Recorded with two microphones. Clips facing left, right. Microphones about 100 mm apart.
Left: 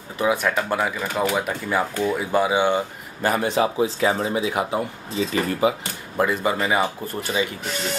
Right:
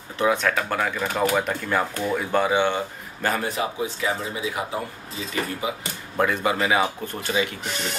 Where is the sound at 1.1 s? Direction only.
Centre (ahead or behind).